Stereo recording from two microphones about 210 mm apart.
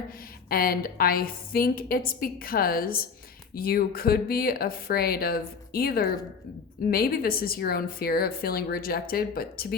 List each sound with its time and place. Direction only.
0.5 s a woman's voice: 45° left (ahead or behind)